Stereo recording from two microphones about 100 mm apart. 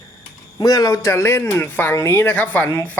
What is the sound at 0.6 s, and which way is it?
A man's voice, 40° left (ahead or behind).